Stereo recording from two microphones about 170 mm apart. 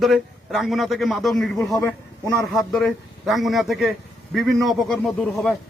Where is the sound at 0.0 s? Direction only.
Centre (ahead or behind).